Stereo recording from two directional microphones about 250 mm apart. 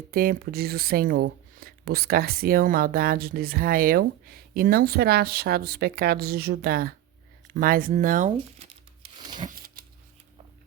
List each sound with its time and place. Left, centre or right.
0.1 s speech: right